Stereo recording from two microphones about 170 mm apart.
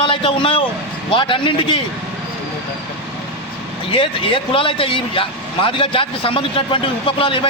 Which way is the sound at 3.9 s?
30° left (ahead or behind).